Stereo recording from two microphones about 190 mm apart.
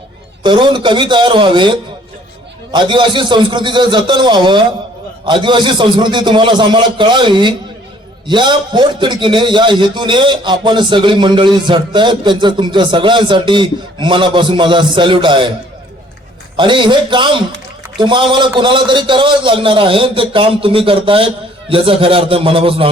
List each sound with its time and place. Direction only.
0.4 s a man's voice: 25° right (ahead or behind)
16.6 s a man's voice: 25° right (ahead or behind)